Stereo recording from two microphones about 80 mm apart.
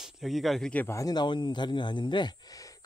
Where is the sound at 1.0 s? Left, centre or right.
Left.